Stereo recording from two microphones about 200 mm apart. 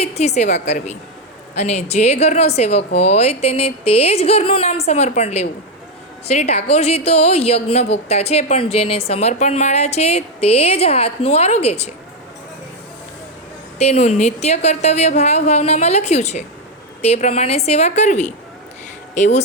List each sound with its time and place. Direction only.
0.0 s a woman's voice: 30° left (ahead or behind)
13.7 s a woman's voice: 30° left (ahead or behind)